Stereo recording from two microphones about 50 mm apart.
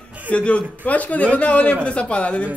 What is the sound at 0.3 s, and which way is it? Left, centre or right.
A man's voice, left.